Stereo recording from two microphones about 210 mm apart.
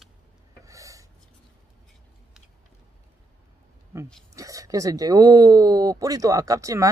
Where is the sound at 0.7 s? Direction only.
15° right (ahead or behind).